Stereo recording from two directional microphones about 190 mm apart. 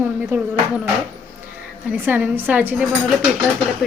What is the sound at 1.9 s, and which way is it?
A woman's voice, 10° right (ahead or behind).